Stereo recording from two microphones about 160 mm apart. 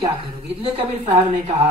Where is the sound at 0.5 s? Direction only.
35° right (ahead or behind).